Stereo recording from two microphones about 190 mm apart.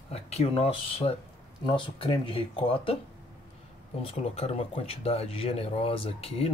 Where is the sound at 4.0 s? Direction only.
30° left (ahead or behind).